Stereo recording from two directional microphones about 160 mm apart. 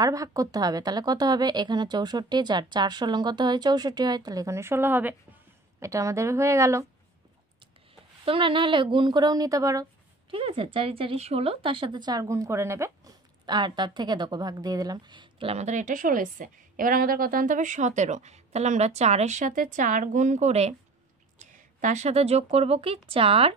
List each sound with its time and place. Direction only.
0.0 s a woman's voice: 20° right (ahead or behind)
8.3 s a woman's voice: 30° right (ahead or behind)
10.3 s a woman's voice: 35° right (ahead or behind)